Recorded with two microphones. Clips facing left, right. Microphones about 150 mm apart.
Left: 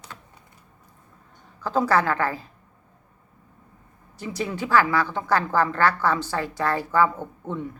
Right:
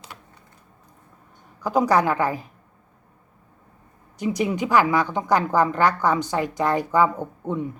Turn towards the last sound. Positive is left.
turn(degrees=-15)  # may be behind; listen again after turning